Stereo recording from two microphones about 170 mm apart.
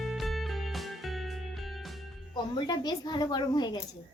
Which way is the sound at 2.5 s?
25° left (ahead or behind).